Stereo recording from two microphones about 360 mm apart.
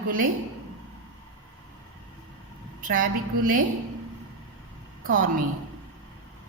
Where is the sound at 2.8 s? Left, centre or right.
Right.